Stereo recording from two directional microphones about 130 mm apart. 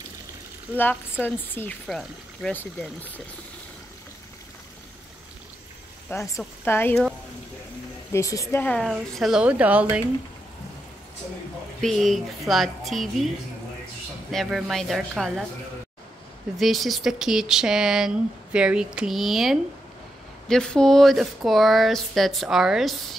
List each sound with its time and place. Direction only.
0.7 s a woman's voice: 15° left (ahead or behind)
1.9 s speech: centre (ahead or behind)
6.0 s a woman's voice: 25° left (ahead or behind)
8.1 s a woman's voice: 25° left (ahead or behind)
8.8 s a woman's voice: centre (ahead or behind)
11.8 s speech: centre (ahead or behind)
14.3 s speech: centre (ahead or behind)
16.5 s speech: centre (ahead or behind)